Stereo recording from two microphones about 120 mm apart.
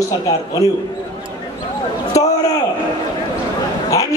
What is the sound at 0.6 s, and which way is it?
Speech, 70° left (ahead or behind).